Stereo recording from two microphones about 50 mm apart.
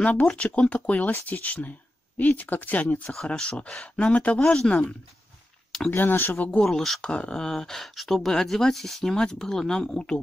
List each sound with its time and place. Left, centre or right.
0.0 s speech: left
3.3 s speech: left
5.9 s speech: left
6.6 s speech: centre
7.0 s speech: left